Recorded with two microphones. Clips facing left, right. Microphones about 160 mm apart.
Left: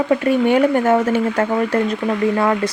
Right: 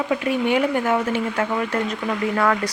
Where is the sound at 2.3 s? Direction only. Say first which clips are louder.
Left 3 dB; 25° left (ahead or behind).